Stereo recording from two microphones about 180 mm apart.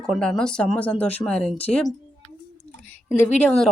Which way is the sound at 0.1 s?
5° left (ahead or behind).